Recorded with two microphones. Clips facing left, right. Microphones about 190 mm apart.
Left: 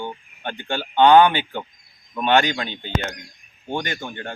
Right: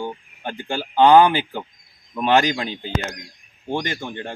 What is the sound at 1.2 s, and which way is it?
Speech, 30° right (ahead or behind).